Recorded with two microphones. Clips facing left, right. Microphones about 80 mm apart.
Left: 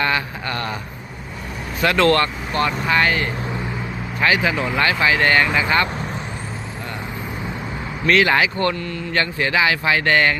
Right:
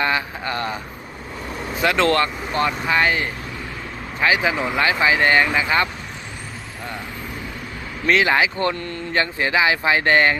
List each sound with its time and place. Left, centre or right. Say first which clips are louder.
0.0 s speech: even; centre
1.8 s speech: left 2 dB; centre
8.0 s speech: left 1 dB; centre